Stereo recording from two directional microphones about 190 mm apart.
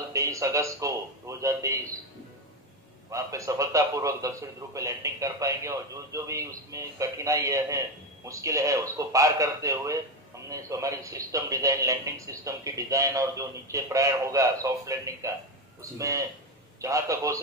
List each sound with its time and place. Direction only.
0.1 s a man's voice: 15° right (ahead or behind)
3.1 s a man's voice: 15° right (ahead or behind)